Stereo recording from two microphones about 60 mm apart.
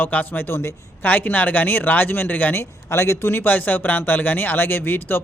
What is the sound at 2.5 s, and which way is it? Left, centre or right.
Speech, left.